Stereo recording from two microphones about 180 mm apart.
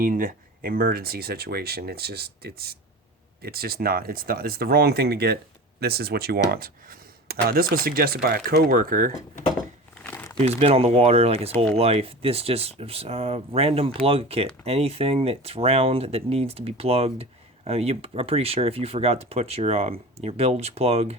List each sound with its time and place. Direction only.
0.0 s speech: 50° right (ahead or behind)
10.0 s crumpling: 10° left (ahead or behind)
10.4 s speech: 35° right (ahead or behind)